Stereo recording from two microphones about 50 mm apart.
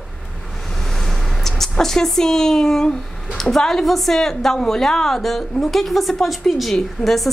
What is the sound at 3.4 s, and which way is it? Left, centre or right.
A woman's voice, centre.